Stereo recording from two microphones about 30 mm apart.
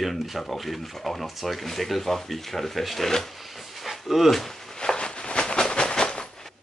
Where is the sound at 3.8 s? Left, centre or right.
Centre.